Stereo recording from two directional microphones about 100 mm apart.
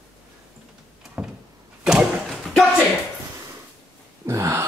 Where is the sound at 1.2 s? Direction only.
10° right (ahead or behind).